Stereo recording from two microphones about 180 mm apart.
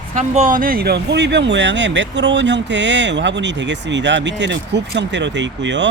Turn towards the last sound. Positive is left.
turn(degrees=-80)